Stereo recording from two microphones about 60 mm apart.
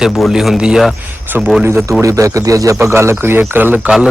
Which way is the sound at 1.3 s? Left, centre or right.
Right.